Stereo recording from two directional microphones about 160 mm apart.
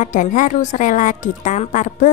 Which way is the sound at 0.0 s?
50° left (ahead or behind).